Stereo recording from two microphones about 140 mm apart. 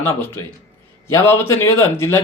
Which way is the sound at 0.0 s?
15° left (ahead or behind).